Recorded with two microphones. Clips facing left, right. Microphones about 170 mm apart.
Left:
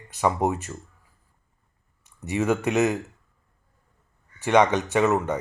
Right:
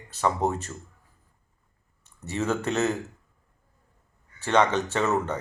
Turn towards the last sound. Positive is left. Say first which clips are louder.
# left 4 dB
turn(degrees=15)  # may be behind; listen again after turning